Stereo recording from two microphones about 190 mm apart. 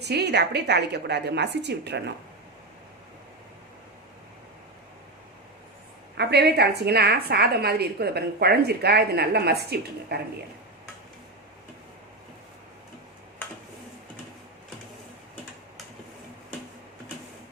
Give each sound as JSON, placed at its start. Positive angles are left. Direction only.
{"t": 0.0, "sound": "a woman's voice", "side_deg": -60}
{"t": 6.1, "sound": "a woman's voice", "side_deg": -60}